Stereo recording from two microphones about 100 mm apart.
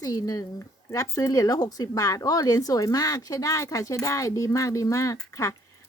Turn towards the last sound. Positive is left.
turn(degrees=30)  # may be behind; listen again after turning